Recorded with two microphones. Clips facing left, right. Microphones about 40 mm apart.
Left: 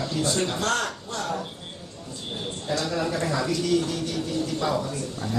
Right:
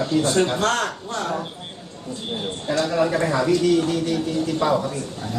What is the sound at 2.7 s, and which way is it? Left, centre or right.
Speech, right.